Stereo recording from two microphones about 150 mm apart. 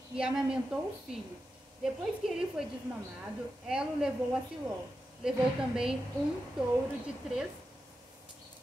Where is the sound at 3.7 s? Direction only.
5° right (ahead or behind).